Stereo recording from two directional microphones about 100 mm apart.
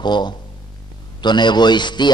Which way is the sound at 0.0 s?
45° left (ahead or behind).